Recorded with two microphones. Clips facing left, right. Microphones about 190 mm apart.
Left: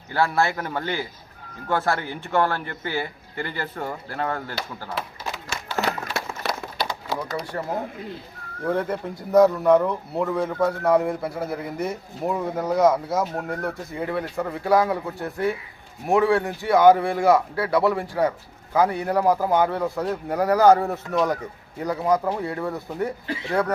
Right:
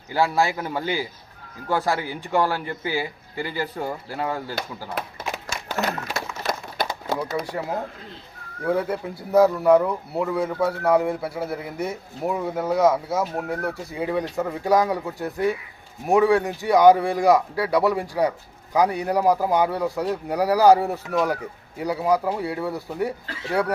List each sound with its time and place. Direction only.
0.1 s speech: 10° right (ahead or behind)
6.5 s crumpling: 50° right (ahead or behind)
7.4 s speech: 10° right (ahead or behind)